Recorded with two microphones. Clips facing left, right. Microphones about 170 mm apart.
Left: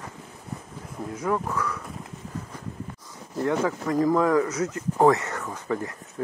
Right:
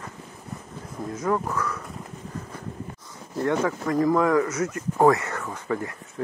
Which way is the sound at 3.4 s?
15° left (ahead or behind).